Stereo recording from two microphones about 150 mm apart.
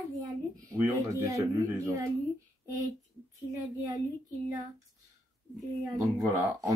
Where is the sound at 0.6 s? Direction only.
20° right (ahead or behind).